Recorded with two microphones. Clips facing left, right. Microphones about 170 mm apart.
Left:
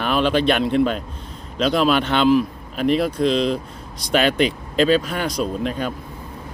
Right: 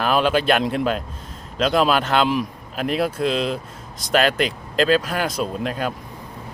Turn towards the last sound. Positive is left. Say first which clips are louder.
# left 1 dB
turn(degrees=0)  # may be behind; listen again after turning